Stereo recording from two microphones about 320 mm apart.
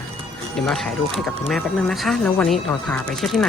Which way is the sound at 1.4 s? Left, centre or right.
Centre.